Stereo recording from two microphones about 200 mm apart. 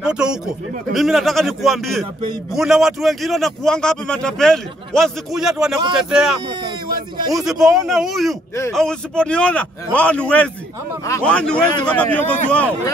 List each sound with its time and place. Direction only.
0.0 s a man's voice: 5° right (ahead or behind)
6.6 s a sound: 20° right (ahead or behind)
7.3 s a man's voice: centre (ahead or behind)